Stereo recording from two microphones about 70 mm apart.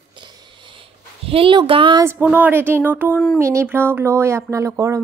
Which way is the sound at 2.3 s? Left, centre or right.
Right.